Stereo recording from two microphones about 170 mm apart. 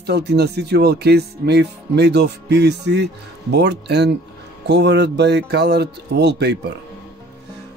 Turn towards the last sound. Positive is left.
turn(degrees=-80)